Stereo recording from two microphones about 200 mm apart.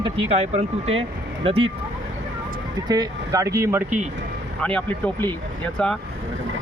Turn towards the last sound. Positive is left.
turn(degrees=5)  # may be behind; listen again after turning